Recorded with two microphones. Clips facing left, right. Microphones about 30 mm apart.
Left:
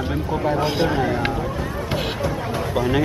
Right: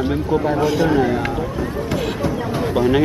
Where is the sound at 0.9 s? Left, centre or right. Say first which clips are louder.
Right 4 dB; centre.